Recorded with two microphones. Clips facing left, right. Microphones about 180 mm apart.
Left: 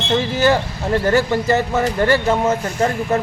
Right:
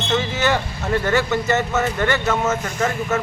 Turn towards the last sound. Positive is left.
turn(degrees=35)  # may be behind; listen again after turning